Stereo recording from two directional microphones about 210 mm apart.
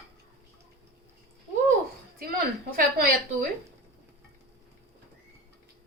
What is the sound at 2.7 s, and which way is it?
Speech, 45° right (ahead or behind).